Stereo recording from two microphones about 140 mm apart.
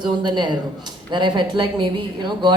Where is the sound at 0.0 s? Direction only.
30° right (ahead or behind).